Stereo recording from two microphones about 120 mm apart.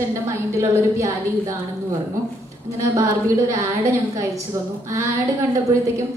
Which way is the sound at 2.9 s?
25° right (ahead or behind).